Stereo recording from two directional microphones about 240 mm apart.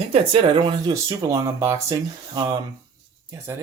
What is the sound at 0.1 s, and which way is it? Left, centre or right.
Speech, right.